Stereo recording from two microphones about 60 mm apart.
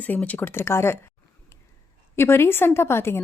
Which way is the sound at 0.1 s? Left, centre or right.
Left.